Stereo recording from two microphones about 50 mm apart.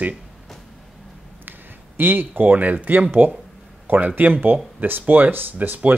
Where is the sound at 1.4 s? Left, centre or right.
Right.